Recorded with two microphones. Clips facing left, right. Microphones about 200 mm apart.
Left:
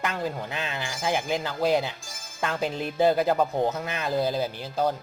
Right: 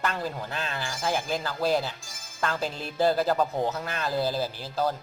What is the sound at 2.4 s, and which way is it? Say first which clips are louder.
Music: left 1 dB; 15° left (ahead or behind).